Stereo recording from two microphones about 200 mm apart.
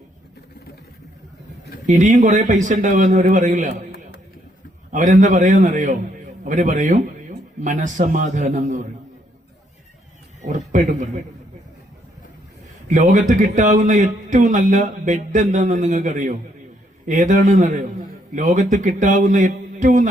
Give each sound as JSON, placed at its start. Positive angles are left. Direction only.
{"t": 1.9, "sound": "a man's voice", "side_deg": -40}
{"t": 4.9, "sound": "a man's voice", "side_deg": -40}
{"t": 10.7, "sound": "a man's voice", "side_deg": -40}
{"t": 12.9, "sound": "a man's voice", "side_deg": -40}